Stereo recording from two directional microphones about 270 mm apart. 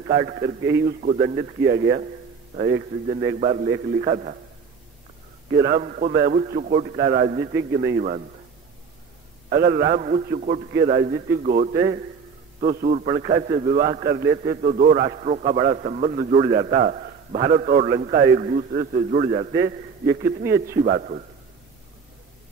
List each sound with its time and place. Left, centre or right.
0.1 s a man's voice: right
5.5 s a man's voice: right
9.5 s a man's voice: right